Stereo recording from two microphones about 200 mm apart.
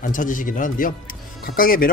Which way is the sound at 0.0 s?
40° left (ahead or behind).